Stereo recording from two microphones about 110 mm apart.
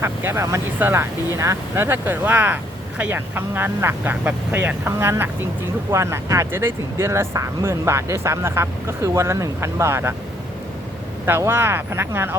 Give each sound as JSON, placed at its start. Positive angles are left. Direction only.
{"t": 0.0, "sound": "speech", "side_deg": -20}
{"t": 11.3, "sound": "speech", "side_deg": -20}